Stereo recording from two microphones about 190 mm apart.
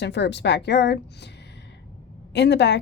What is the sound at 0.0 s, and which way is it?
A woman's voice, 65° left (ahead or behind).